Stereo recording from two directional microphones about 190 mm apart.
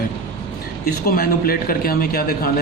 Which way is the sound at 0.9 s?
50° left (ahead or behind).